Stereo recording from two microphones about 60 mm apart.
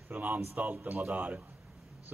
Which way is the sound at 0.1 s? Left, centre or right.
Right.